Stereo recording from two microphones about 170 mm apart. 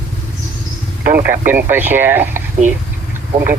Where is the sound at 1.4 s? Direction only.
10° right (ahead or behind).